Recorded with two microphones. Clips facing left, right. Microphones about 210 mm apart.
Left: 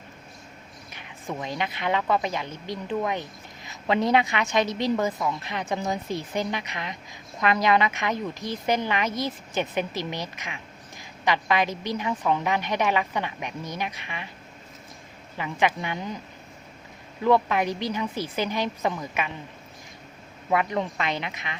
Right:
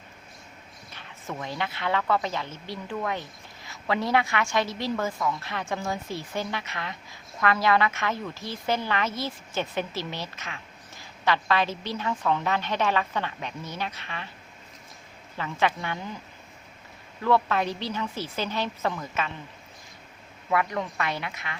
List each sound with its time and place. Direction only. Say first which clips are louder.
0.9 s speech: left 3 dB; 15° left (ahead or behind)
15.4 s speech: left 1 dB; 15° left (ahead or behind)
17.2 s speech: left 2 dB; 15° left (ahead or behind)
20.5 s speech: left 2 dB; 20° left (ahead or behind)